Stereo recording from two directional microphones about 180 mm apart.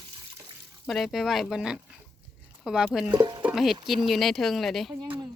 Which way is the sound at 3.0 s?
25° right (ahead or behind).